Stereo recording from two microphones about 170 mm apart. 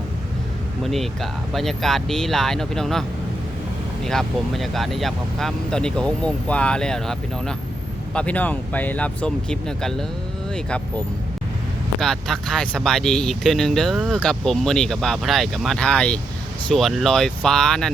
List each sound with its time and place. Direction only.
0.8 s speech: centre (ahead or behind)
4.0 s speech: centre (ahead or behind)